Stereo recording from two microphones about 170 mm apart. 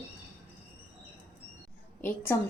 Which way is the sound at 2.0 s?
10° left (ahead or behind).